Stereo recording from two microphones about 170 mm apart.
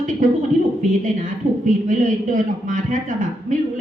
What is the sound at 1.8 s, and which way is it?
A man's voice, 50° right (ahead or behind).